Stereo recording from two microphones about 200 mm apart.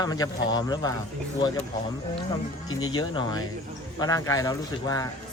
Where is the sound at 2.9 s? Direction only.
20° left (ahead or behind).